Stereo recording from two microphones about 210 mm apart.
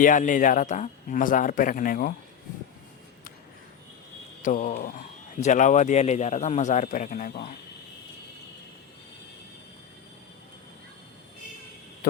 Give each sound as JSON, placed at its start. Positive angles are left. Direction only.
{"t": 0.0, "sound": "speech", "side_deg": 40}
{"t": 4.4, "sound": "speech", "side_deg": 35}